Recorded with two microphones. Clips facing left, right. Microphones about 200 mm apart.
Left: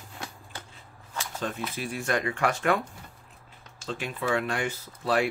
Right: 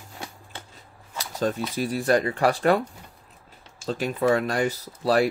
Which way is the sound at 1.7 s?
35° right (ahead or behind).